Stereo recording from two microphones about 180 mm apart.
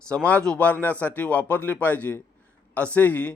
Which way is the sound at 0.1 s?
5° left (ahead or behind).